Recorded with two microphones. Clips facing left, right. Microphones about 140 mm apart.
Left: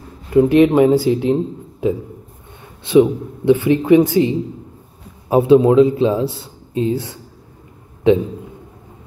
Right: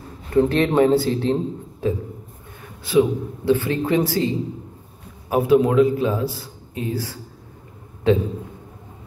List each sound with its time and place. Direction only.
0.3 s a man's voice: 10° left (ahead or behind)
5.3 s a man's voice: 25° left (ahead or behind)